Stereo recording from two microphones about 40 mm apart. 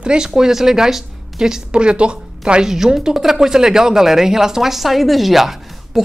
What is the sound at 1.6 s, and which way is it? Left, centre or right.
A woman's voice, right.